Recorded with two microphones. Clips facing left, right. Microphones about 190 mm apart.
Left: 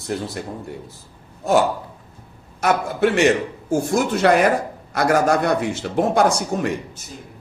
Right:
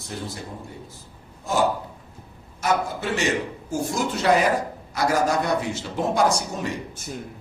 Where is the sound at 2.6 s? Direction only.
65° left (ahead or behind).